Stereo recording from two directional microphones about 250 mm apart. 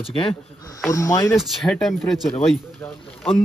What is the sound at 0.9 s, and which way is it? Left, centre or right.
Speech, centre.